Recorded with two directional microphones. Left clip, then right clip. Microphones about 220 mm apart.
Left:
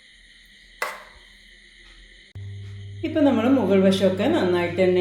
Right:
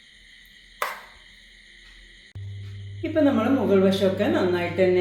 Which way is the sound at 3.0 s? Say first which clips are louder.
Left 1 dB; 20° left (ahead or behind).